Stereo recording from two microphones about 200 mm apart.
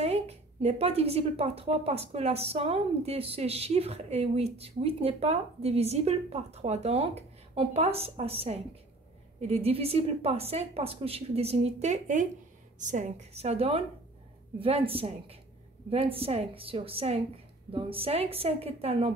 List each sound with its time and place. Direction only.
0.0 s a woman's voice: 30° right (ahead or behind)